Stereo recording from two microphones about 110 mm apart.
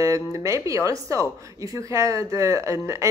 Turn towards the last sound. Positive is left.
turn(degrees=-25)  # may be behind; listen again after turning